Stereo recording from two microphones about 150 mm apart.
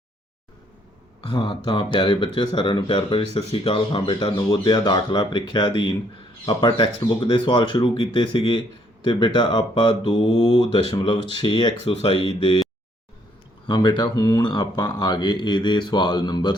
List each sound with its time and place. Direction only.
1.3 s speech: 30° left (ahead or behind)
13.7 s speech: 30° left (ahead or behind)